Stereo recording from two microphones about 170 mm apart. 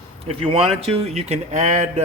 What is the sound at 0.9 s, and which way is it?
Speech, 35° right (ahead or behind).